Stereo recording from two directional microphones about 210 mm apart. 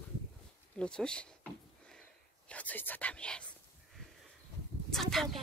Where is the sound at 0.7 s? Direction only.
5° left (ahead or behind).